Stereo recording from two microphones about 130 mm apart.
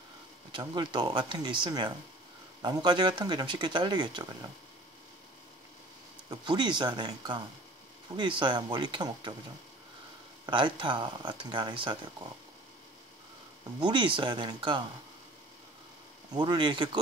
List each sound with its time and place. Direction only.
0.5 s speech: 35° right (ahead or behind)
6.3 s speech: 35° right (ahead or behind)
10.4 s speech: 40° right (ahead or behind)
13.7 s speech: 35° right (ahead or behind)
16.3 s speech: 35° right (ahead or behind)